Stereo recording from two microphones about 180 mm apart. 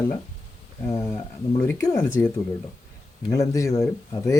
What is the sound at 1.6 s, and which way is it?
Speech, 10° left (ahead or behind).